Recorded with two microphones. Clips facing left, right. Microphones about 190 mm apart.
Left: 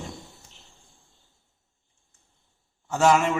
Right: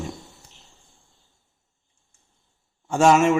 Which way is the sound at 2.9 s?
20° right (ahead or behind).